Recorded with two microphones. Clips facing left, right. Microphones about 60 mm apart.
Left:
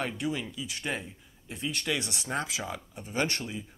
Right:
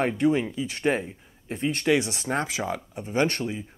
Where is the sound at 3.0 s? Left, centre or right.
Right.